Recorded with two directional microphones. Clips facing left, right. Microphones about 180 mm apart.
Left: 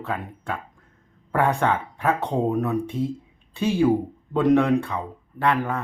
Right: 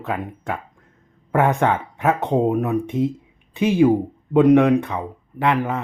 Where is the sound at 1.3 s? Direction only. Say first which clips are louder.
Right 3 dB; 20° right (ahead or behind).